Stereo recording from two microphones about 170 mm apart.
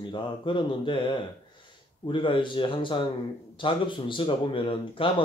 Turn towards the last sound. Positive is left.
turn(degrees=30)  # may be behind; listen again after turning